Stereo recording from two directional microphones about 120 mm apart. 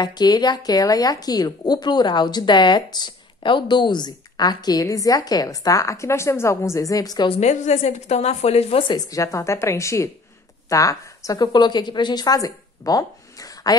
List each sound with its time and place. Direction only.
0.0 s speech: 35° left (ahead or behind)
7.2 s a woman's voice: 70° left (ahead or behind)
8.8 s a woman's voice: 30° left (ahead or behind)